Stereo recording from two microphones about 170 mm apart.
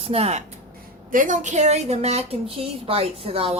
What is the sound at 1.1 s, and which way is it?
A woman's voice, 50° right (ahead or behind).